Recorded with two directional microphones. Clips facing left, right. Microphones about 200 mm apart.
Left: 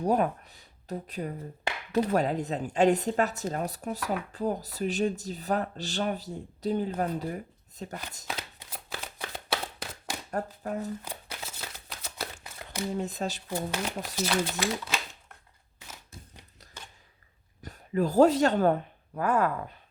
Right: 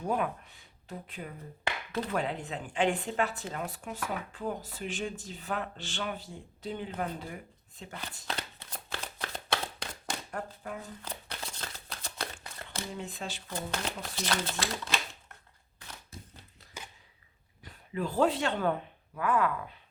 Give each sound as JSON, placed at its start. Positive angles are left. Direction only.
{"t": 0.0, "sound": "speech", "side_deg": 40}
{"t": 8.3, "sound": "shuffling cards", "side_deg": 10}
{"t": 10.3, "sound": "speech", "side_deg": 40}
{"t": 11.0, "sound": "a sound", "side_deg": 10}
{"t": 13.0, "sound": "speech", "side_deg": 40}
{"t": 13.5, "sound": "speech", "side_deg": 10}
{"t": 17.6, "sound": "speech", "side_deg": 45}